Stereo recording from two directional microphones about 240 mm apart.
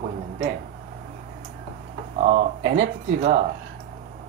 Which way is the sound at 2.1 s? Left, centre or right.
Right.